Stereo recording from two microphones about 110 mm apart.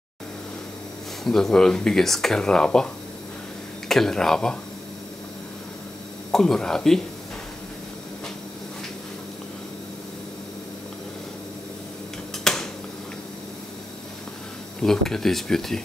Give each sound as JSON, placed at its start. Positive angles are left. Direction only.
{"t": 1.2, "sound": "speech", "side_deg": 5}
{"t": 3.9, "sound": "speech", "side_deg": 5}
{"t": 6.3, "sound": "speech", "side_deg": 5}
{"t": 12.5, "sound": "a sound", "side_deg": 5}
{"t": 14.8, "sound": "speech", "side_deg": 5}